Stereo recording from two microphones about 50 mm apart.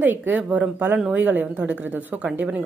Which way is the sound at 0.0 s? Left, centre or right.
Right.